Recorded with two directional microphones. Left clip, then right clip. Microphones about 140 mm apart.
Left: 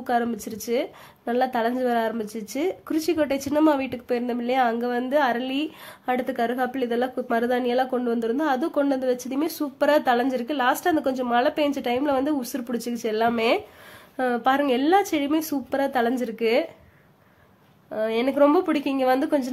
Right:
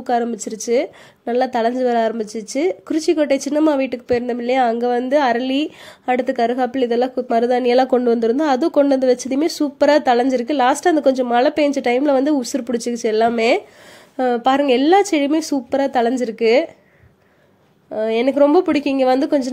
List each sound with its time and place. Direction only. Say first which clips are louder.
0.0 s a woman's voice: right 5 dB; 20° right (ahead or behind)
7.7 s a woman's voice: right 9 dB; 45° right (ahead or behind); by 16.6 s 30° right (ahead or behind)
17.9 s a woman's voice: right 6 dB; 30° right (ahead or behind)